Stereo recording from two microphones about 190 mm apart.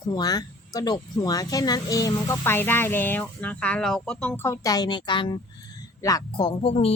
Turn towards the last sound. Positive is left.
turn(degrees=30)  # may be behind; listen again after turning